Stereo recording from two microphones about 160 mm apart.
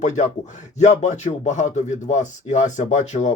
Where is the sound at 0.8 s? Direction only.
45° left (ahead or behind).